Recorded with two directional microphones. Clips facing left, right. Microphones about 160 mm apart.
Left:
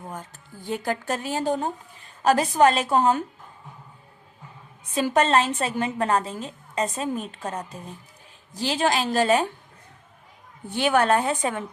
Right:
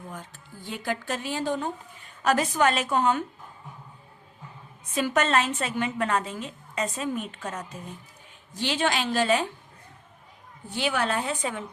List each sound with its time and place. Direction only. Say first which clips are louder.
0.1 s a woman's voice: left 3 dB; 45° left (ahead or behind)
4.9 s a woman's voice: left 3 dB; 35° left (ahead or behind)
10.8 s speech: left 6 dB; 50° left (ahead or behind)